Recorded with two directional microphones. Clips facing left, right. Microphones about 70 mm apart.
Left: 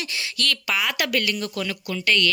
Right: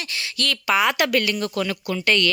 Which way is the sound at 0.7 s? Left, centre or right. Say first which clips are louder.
Right 7 dB; right.